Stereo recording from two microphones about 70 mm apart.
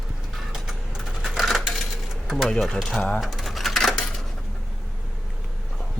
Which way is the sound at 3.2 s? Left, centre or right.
Centre.